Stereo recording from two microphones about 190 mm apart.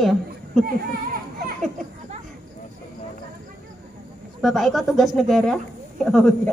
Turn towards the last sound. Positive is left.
turn(degrees=0)  # may be behind; listen again after turning